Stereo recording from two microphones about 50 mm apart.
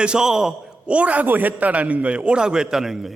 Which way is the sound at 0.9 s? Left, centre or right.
Right.